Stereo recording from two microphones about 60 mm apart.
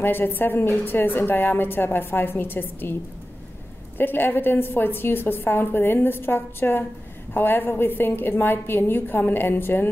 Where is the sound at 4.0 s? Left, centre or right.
Left.